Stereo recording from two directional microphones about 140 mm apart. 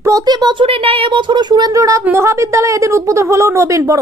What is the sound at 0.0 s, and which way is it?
A woman's voice, 25° right (ahead or behind).